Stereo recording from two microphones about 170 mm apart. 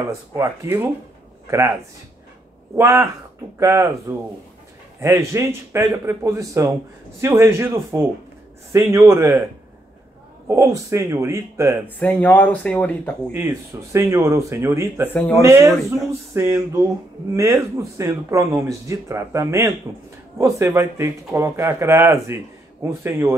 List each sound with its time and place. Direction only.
0.4 s a man's voice: 10° right (ahead or behind)
2.7 s a man's voice: 15° right (ahead or behind)
5.0 s a man's voice: 15° right (ahead or behind)
10.5 s a man's voice: 20° right (ahead or behind)
12.0 s speech: 10° left (ahead or behind)
13.3 s a man's voice: 15° right (ahead or behind)